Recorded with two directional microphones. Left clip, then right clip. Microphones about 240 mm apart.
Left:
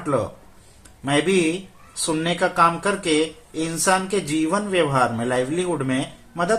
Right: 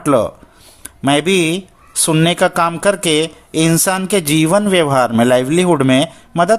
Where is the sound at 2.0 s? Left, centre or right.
Right.